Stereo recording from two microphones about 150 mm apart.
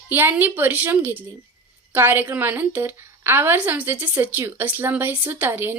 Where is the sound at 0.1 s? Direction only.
15° right (ahead or behind).